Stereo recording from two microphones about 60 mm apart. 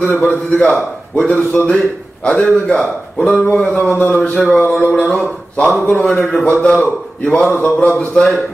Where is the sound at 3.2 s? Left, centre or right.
Centre.